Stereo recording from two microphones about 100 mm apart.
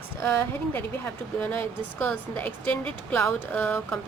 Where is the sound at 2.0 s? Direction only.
15° left (ahead or behind).